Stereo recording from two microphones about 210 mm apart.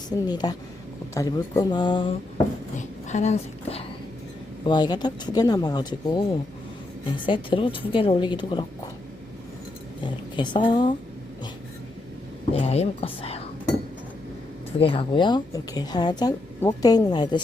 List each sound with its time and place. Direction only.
0.1 s a woman's voice: 20° left (ahead or behind)
2.7 s a woman's voice: 35° left (ahead or behind)
7.3 s a woman's voice: 25° left (ahead or behind)
10.0 s a sound: 20° left (ahead or behind)
12.5 s speech: 30° left (ahead or behind)
14.8 s a woman's voice: 25° left (ahead or behind)